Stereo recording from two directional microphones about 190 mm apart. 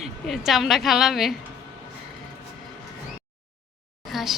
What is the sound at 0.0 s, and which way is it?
A woman's voice, centre (ahead or behind).